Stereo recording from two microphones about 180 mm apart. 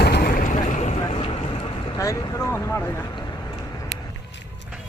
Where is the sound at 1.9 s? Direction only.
20° left (ahead or behind).